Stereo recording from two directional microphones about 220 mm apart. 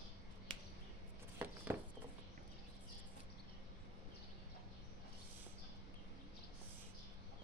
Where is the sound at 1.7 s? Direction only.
15° right (ahead or behind).